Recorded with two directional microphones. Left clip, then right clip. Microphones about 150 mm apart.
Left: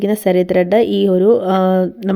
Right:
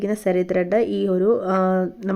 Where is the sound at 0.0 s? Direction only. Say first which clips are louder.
Left 7 dB; 30° left (ahead or behind).